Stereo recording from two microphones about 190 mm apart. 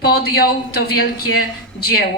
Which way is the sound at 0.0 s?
55° left (ahead or behind).